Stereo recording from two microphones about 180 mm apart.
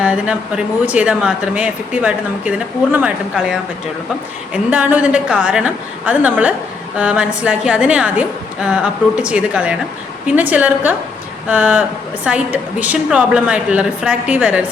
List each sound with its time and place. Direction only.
0.0 s speech: 5° right (ahead or behind)